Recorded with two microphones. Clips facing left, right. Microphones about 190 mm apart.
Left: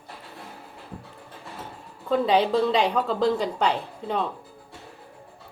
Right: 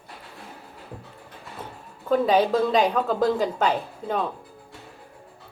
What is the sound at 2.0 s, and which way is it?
A woman's voice, 5° right (ahead or behind).